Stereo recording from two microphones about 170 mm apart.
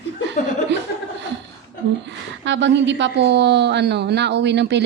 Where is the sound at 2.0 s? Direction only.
90° right.